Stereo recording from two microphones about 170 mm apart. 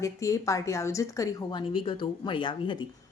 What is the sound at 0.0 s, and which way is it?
Speech, 20° left (ahead or behind).